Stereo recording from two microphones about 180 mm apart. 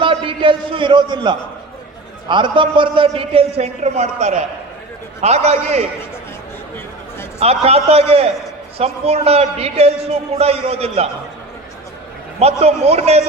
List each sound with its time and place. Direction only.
0.0 s a man's voice: 30° right (ahead or behind)
7.3 s a man's voice: 35° right (ahead or behind)
12.4 s a man's voice: 35° right (ahead or behind)